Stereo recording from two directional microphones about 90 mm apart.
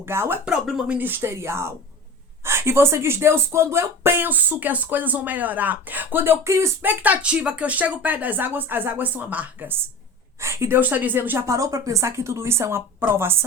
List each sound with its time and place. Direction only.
0.0 s speech: 25° right (ahead or behind)
0.4 s speech: 10° right (ahead or behind); by 6.9 s 30° right (ahead or behind)
7.0 s a woman's voice: 15° right (ahead or behind); by 10.8 s 30° right (ahead or behind)
10.8 s speech: 20° right (ahead or behind)
11.4 s a woman's voice: 35° right (ahead or behind)